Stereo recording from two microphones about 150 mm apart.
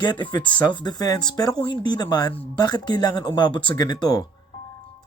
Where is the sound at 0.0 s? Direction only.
30° left (ahead or behind).